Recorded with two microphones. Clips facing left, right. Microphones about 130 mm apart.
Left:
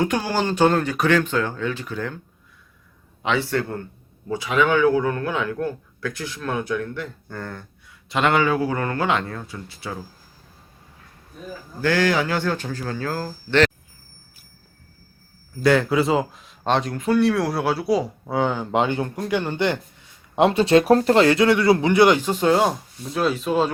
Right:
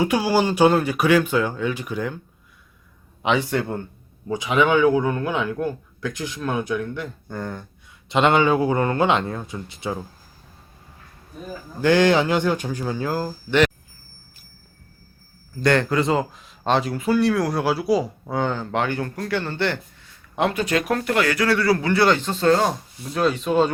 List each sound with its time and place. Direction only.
0.0 s a man's voice: 10° right (ahead or behind)
3.2 s a man's voice: 15° right (ahead or behind)
11.8 s a man's voice: 20° right (ahead or behind)
15.6 s speech: 5° left (ahead or behind)
23.0 s speech: centre (ahead or behind)